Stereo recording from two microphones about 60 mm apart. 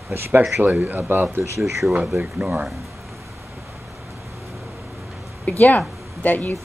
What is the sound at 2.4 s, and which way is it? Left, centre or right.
Speech, right.